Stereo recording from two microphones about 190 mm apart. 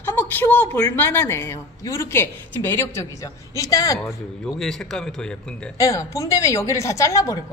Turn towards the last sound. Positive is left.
turn(degrees=15)  # may be behind; listen again after turning